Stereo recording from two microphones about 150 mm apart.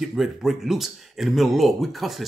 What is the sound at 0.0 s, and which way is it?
Speech, 5° right (ahead or behind).